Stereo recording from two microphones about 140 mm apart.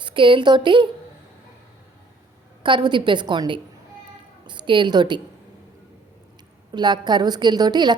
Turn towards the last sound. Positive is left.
turn(degrees=-30)  # may be behind; listen again after turning